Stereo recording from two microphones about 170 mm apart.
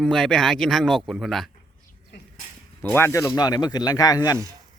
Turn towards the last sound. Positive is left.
turn(degrees=25)  # may be behind; listen again after turning